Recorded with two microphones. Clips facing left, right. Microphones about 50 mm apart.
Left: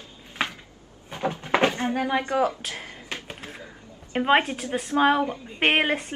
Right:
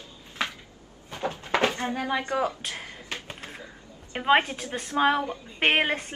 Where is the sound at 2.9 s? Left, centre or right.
Centre.